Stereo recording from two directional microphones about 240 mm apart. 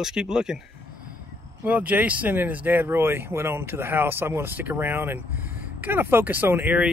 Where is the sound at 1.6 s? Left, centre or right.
Centre.